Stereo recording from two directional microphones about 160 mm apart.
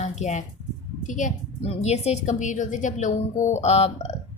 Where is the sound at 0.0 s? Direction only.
45° left (ahead or behind).